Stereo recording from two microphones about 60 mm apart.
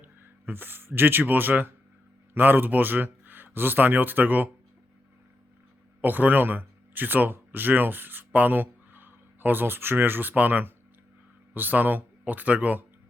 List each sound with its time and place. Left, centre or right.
0.0 s speech: right
6.0 s speech: right